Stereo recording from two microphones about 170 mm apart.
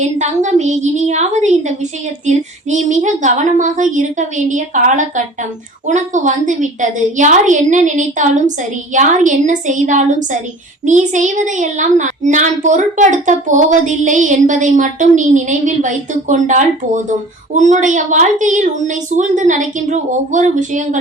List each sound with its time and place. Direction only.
0.0 s a woman's voice: 45° right (ahead or behind)